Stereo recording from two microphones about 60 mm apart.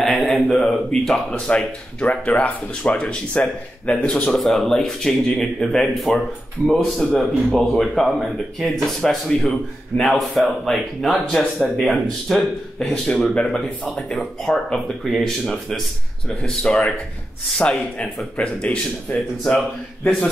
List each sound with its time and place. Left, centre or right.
0.0 s a sound: centre
1.5 s speech: left
4.4 s speech: centre
13.3 s speech: centre
16.4 s speech: centre